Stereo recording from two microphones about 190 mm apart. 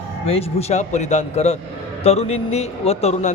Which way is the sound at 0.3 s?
30° left (ahead or behind).